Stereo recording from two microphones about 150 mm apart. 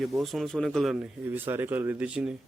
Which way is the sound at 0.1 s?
Centre (ahead or behind).